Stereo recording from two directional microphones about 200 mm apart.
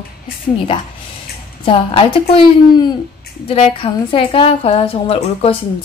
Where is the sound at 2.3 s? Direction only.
20° left (ahead or behind).